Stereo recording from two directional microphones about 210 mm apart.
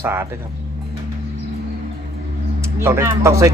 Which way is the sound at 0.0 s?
10° right (ahead or behind).